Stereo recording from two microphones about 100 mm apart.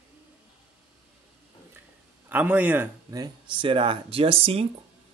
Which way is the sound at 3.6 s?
60° right (ahead or behind).